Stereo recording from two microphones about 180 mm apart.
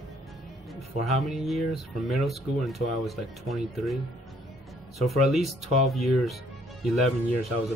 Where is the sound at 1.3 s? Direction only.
Centre (ahead or behind).